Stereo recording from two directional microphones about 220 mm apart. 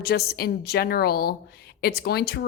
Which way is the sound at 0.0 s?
45° left (ahead or behind).